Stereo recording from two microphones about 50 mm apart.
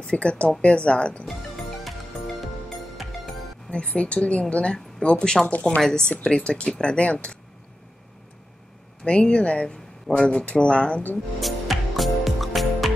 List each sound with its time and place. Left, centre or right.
0.0 s speech: left
1.2 s music: centre
3.7 s speech: left
5.5 s a woman's voice: left
5.8 s speech: centre
9.0 s speech: centre
11.4 s music: centre